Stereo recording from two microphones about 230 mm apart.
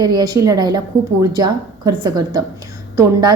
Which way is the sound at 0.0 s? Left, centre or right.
Centre.